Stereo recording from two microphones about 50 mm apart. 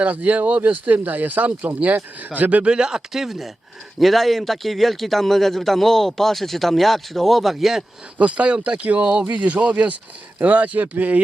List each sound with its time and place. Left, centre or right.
0.0 s speech: right
2.7 s a man's voice: centre
8.2 s speech: right